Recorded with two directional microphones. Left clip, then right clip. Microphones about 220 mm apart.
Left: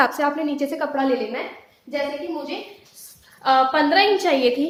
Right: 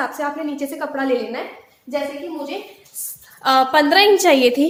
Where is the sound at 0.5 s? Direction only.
15° left (ahead or behind).